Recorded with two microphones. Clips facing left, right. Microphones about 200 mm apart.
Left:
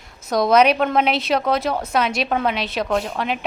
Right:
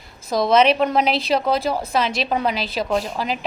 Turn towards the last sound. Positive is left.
turn(degrees=0)  # may be behind; listen again after turning